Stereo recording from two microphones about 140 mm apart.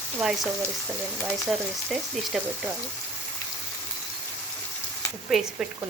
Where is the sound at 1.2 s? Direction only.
Centre (ahead or behind).